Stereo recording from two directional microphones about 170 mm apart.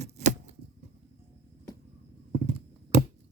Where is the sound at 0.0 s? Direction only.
45° right (ahead or behind).